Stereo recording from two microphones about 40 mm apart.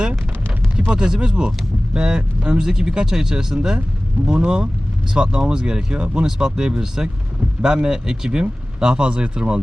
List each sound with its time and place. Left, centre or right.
0.9 s speech: right
2.6 s speech: centre